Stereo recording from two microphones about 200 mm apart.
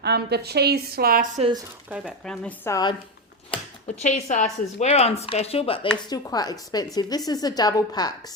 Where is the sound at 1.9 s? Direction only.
Centre (ahead or behind); by 2.9 s 15° left (ahead or behind).